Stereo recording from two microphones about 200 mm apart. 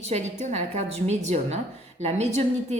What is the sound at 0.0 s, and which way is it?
A woman's voice, 35° right (ahead or behind).